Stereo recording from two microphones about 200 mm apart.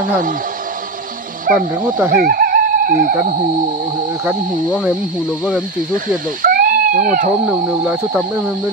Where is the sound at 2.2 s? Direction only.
45° right (ahead or behind).